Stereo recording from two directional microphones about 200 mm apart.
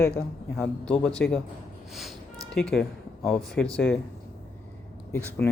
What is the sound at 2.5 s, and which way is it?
Speech, 5° left (ahead or behind).